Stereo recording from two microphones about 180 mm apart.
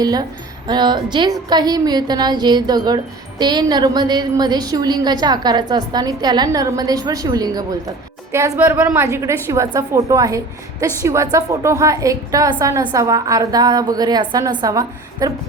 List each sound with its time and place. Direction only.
0.0 s speech: 20° right (ahead or behind)